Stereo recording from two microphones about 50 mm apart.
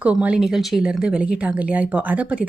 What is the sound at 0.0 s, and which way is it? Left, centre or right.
Speech, right.